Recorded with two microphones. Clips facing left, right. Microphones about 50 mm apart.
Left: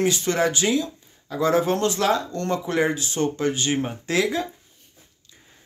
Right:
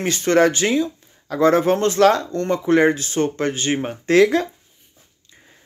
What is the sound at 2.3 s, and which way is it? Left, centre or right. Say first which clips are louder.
Speech: right 7 dB; right.